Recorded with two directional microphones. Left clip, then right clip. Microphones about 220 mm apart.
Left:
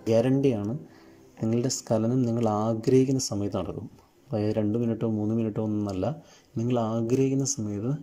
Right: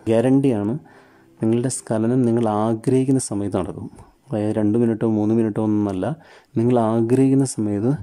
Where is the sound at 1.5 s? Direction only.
10° right (ahead or behind).